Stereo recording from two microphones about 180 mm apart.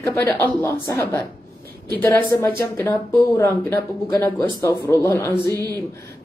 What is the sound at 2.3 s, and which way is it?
Speech, 15° left (ahead or behind).